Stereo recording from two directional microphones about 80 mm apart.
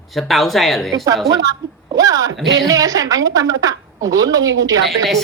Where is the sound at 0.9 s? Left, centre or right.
Right.